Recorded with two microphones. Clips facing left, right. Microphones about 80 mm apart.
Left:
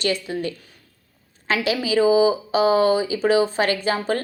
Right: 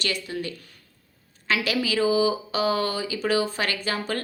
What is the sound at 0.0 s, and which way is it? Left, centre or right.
A woman's voice, left.